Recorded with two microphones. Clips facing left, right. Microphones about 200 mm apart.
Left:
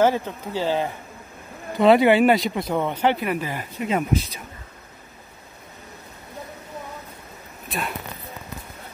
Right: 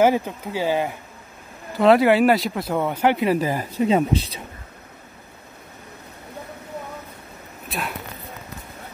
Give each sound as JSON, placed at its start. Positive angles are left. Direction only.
{"t": 0.0, "sound": "speech", "side_deg": -10}
{"t": 1.8, "sound": "speech", "side_deg": 0}
{"t": 3.3, "sound": "speech", "side_deg": -40}
{"t": 7.6, "sound": "a sound", "side_deg": 0}